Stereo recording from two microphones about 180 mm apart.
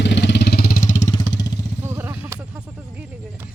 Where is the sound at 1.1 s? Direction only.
20° left (ahead or behind).